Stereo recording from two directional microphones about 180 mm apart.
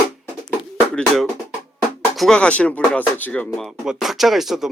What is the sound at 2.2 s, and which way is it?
Speech, 5° left (ahead or behind).